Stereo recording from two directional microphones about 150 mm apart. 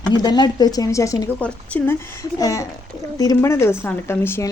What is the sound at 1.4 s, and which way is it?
A woman's voice, 10° left (ahead or behind).